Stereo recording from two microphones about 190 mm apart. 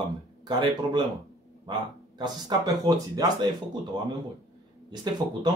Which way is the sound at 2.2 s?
20° right (ahead or behind).